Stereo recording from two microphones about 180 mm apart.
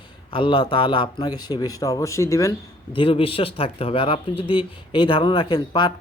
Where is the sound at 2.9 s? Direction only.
30° left (ahead or behind).